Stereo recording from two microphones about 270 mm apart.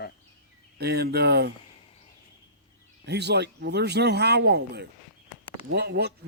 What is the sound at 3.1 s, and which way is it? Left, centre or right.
Speech, right.